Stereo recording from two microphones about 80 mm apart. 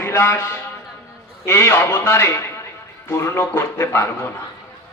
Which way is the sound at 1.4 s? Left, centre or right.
Left.